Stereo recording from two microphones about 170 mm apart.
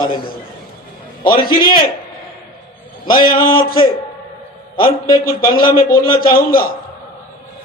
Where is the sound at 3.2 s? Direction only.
55° left (ahead or behind).